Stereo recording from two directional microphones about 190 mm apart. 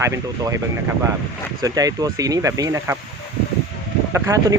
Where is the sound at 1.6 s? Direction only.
20° right (ahead or behind).